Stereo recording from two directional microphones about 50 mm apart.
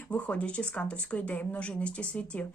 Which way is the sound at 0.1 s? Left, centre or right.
Left.